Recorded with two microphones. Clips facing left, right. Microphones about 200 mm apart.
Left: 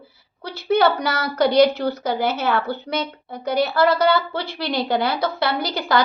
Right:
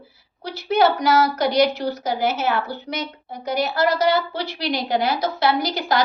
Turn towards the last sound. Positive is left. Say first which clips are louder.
# left 1 dB
turn(degrees=60)  # may be behind; listen again after turning